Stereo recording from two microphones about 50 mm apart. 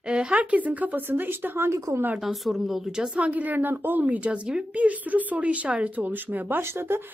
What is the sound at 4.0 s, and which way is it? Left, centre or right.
Speech, right.